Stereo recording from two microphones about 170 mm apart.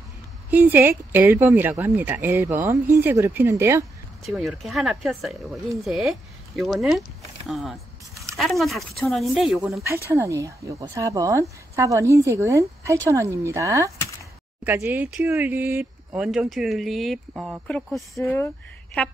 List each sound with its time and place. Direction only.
0.5 s speech: 10° right (ahead or behind)
4.3 s speech: centre (ahead or behind)
9.8 s a woman's voice: 15° right (ahead or behind); by 19.1 s 10° left (ahead or behind)